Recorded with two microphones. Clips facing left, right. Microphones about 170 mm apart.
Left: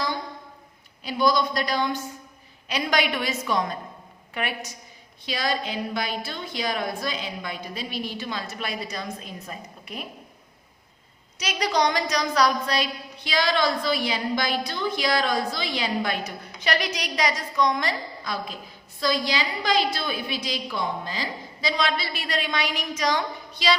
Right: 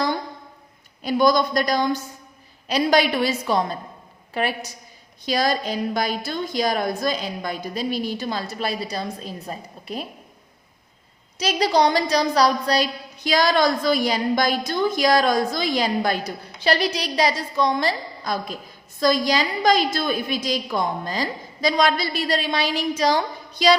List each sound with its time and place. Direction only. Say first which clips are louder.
1.0 s a woman's voice: right 4 dB; 45° right (ahead or behind)
11.3 s a woman's voice: right 5 dB; 30° right (ahead or behind)